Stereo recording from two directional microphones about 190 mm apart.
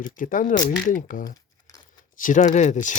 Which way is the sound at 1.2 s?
20° left (ahead or behind).